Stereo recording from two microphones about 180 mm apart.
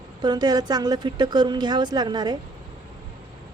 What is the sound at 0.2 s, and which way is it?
A woman's voice, 25° right (ahead or behind).